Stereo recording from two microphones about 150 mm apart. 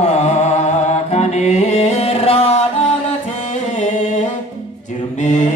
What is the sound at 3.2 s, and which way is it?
Music, 50° left (ahead or behind).